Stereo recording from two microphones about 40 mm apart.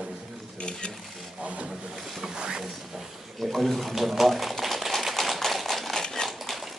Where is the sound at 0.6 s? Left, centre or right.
Left.